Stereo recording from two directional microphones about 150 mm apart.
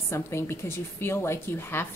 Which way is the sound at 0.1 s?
20° left (ahead or behind).